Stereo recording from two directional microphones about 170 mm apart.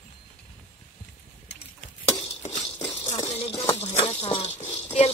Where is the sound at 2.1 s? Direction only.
15° left (ahead or behind).